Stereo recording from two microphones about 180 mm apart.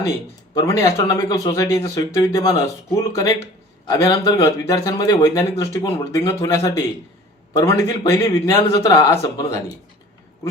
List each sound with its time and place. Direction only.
0.5 s speech: 20° left (ahead or behind)